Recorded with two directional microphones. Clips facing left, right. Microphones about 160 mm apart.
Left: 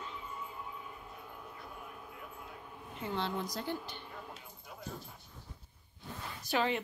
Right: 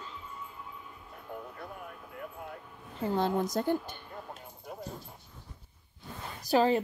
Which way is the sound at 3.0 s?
40° right (ahead or behind).